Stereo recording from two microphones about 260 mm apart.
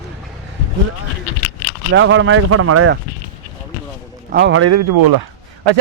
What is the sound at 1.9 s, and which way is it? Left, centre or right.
A man's voice, right.